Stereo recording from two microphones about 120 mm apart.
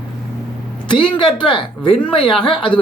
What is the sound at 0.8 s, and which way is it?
Speech, 40° left (ahead or behind).